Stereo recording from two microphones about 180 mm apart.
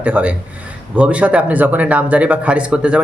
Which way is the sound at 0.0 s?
10° right (ahead or behind).